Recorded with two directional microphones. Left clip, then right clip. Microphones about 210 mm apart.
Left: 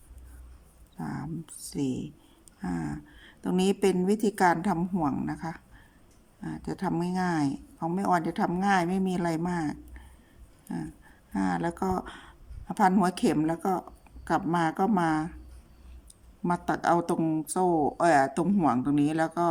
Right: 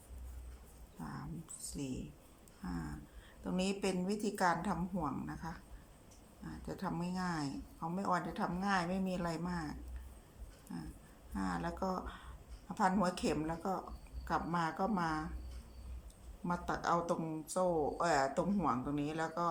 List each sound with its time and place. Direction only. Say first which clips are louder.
0.9 s a sound: left 11 dB; 55° left (ahead or behind)
1.7 s speech: left 13 dB; 55° left (ahead or behind)
16.4 s speech: left 10 dB; 55° left (ahead or behind)